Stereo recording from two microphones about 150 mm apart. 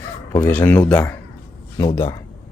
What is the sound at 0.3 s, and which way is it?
Speech, 15° left (ahead or behind).